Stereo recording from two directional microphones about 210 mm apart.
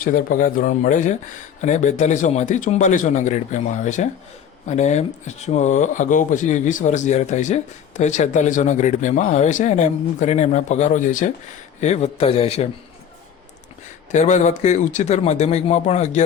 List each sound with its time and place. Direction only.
0.0 s a man's voice: 40° left (ahead or behind)
14.1 s speech: 35° left (ahead or behind)